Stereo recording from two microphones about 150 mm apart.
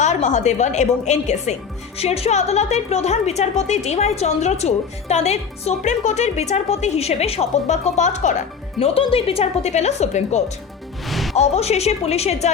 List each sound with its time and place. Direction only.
0.0 s a woman's voice: 50° left (ahead or behind)
8.8 s a woman's voice: 40° left (ahead or behind)
11.0 s music: centre (ahead or behind)
11.3 s a woman's voice: 45° left (ahead or behind)